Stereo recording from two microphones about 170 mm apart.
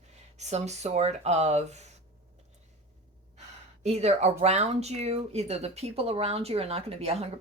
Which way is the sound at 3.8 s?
40° right (ahead or behind).